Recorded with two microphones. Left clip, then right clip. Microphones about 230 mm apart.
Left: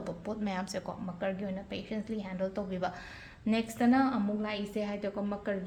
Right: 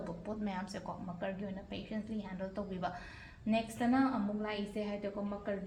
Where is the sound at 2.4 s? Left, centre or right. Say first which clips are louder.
Left 6 dB; left.